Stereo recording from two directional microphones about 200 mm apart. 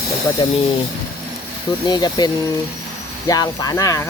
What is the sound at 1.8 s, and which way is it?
Speech, 20° left (ahead or behind).